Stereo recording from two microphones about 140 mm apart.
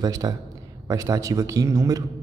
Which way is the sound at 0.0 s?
25° right (ahead or behind).